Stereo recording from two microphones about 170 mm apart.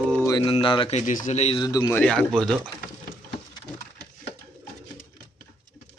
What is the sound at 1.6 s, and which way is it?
Speech, 20° left (ahead or behind).